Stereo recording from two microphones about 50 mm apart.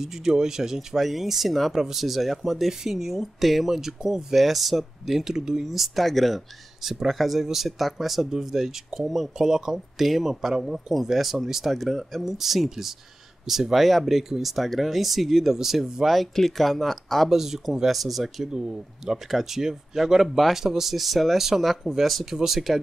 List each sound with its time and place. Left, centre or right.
0.0 s speech: centre
17.3 s speech: centre
18.5 s speech: centre